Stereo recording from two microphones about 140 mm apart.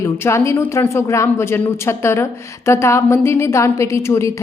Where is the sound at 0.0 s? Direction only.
20° left (ahead or behind).